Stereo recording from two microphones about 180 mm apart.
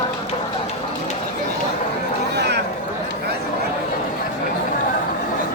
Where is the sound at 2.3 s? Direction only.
65° right (ahead or behind).